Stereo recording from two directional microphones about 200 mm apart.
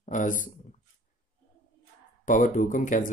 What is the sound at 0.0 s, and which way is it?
Speech, 40° left (ahead or behind).